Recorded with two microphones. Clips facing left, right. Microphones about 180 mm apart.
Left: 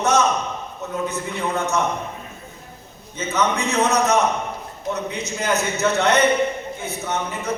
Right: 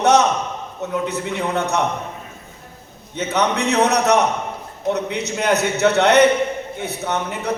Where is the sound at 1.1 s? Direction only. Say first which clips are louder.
Right 3 dB; 65° right (ahead or behind).